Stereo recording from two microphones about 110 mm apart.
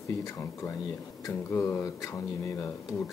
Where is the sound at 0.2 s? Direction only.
25° left (ahead or behind).